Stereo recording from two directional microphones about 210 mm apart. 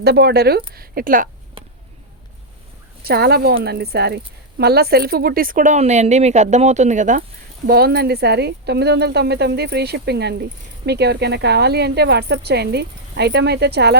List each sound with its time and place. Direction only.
0.0 s speech: 50° right (ahead or behind)
3.0 s speech: 45° right (ahead or behind)
7.7 s speech: 50° right (ahead or behind)